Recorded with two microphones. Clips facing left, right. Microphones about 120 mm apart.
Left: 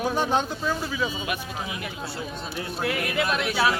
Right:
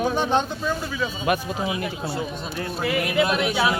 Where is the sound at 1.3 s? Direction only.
45° right (ahead or behind).